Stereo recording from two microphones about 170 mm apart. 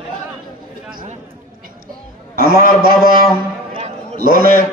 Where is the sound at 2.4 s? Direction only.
55° right (ahead or behind).